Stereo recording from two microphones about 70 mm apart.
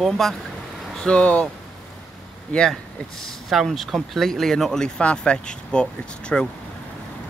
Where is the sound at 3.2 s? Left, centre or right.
Centre.